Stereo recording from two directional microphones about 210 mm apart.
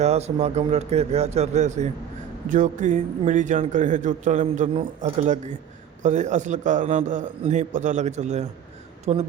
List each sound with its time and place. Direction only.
0.0 s a man's voice: 30° right (ahead or behind)